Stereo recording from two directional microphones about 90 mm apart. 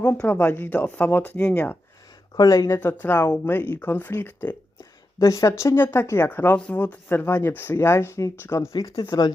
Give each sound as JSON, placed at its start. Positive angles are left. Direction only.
{"t": 0.0, "sound": "speech", "side_deg": 15}
{"t": 2.3, "sound": "speech", "side_deg": 40}
{"t": 2.6, "sound": "speech", "side_deg": 25}
{"t": 5.2, "sound": "speech", "side_deg": 35}